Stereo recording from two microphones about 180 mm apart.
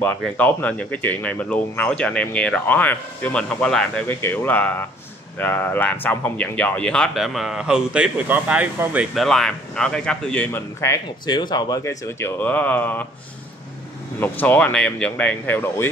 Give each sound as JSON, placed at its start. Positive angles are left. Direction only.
{"t": 0.0, "sound": "speech", "side_deg": 10}
{"t": 14.2, "sound": "speech", "side_deg": 10}